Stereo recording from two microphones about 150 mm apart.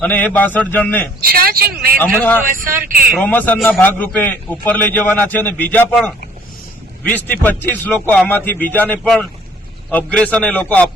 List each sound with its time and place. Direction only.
0.0 s a man's voice: 10° left (ahead or behind)
1.2 s a sound: 80° right
2.0 s a man's voice: 10° left (ahead or behind)
2.5 s speech: 65° right (ahead or behind)
3.2 s a man's voice: 10° left (ahead or behind)